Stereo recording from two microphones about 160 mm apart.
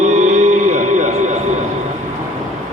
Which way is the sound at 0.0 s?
45° right (ahead or behind).